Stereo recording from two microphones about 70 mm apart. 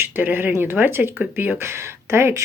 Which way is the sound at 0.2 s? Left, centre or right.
Right.